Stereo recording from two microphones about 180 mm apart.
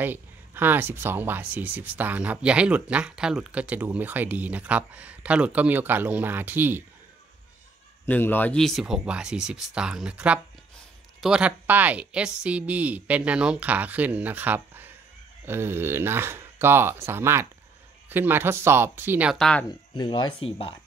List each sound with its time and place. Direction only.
0.0 s speech: 10° right (ahead or behind)
8.0 s speech: 10° left (ahead or behind); by 19.3 s 10° right (ahead or behind)
19.3 s speech: 5° left (ahead or behind)
19.7 s speech: 25° left (ahead or behind)